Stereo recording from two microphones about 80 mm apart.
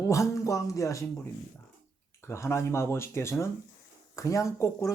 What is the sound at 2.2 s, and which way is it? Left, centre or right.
Speech, left.